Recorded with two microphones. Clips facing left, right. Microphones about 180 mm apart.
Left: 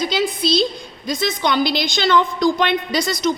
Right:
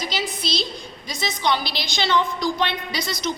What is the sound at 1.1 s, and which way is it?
A woman's voice, 50° left (ahead or behind).